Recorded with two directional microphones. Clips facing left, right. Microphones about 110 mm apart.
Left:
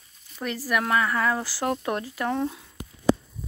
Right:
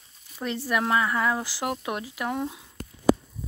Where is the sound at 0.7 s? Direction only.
20° right (ahead or behind).